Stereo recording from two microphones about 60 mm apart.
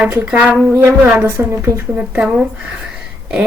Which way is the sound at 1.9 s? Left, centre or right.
Centre.